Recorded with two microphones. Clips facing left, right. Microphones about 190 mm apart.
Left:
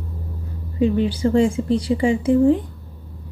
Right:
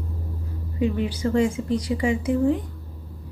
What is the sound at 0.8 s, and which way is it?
Speech, 30° left (ahead or behind).